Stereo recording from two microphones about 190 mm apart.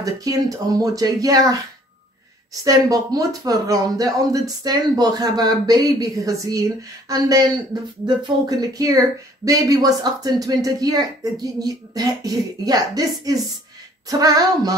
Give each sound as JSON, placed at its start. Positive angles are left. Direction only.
{"t": 0.0, "sound": "speech", "side_deg": -20}
{"t": 2.6, "sound": "speech", "side_deg": -20}